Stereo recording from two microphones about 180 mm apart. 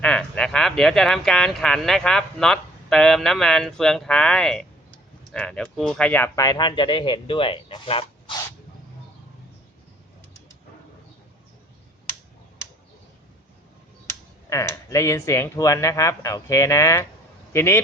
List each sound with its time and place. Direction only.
0.0 s speech: 5° left (ahead or behind); by 8.4 s 30° left (ahead or behind)
14.5 s speech: 15° left (ahead or behind)